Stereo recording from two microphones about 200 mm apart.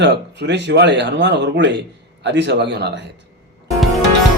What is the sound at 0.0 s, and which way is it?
A man's voice, 60° right (ahead or behind).